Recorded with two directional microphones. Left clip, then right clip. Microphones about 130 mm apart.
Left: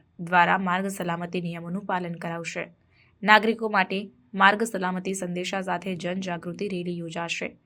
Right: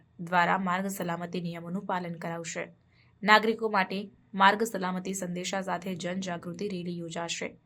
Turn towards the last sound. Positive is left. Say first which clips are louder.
# left 4 dB
turn(degrees=20)  # may be behind; listen again after turning